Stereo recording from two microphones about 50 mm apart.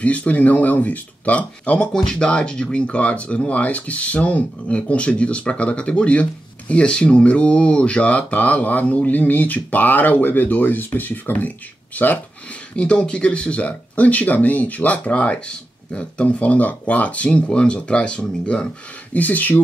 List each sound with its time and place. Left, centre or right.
0.0 s speech: left
2.0 s speech: centre; by 12.2 s left
12.7 s speech: left
19.1 s speech: left